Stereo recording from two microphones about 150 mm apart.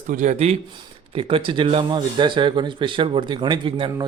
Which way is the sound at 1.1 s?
35° right (ahead or behind).